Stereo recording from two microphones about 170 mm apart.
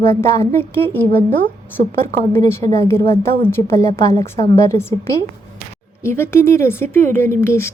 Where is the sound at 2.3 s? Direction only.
15° left (ahead or behind).